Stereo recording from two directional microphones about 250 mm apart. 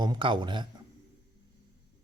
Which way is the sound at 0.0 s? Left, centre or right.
Centre.